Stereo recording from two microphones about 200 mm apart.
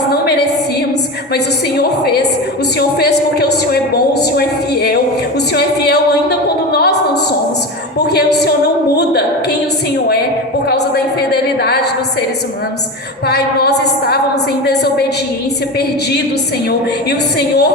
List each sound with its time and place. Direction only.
1.3 s speech: 50° left (ahead or behind)
7.9 s a woman's voice: 55° left (ahead or behind)
10.7 s speech: 55° left (ahead or behind)
13.2 s speech: 55° left (ahead or behind)
16.6 s speech: 50° left (ahead or behind)